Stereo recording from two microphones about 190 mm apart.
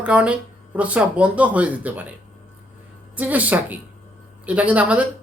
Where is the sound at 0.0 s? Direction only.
5° right (ahead or behind).